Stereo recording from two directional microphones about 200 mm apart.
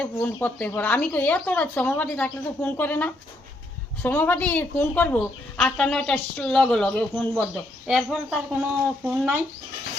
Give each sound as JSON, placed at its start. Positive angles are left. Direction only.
{"t": 0.0, "sound": "a woman's voice", "side_deg": 10}